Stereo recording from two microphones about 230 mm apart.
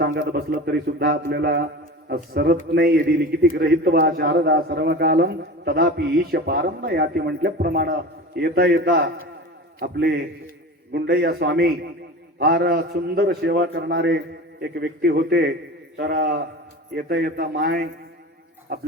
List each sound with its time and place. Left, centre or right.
0.0 s a man's voice: right